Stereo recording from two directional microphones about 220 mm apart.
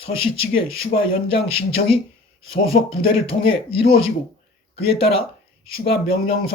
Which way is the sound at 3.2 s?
25° left (ahead or behind).